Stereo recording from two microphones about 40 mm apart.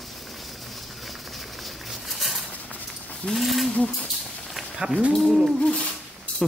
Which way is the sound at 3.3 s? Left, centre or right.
Centre.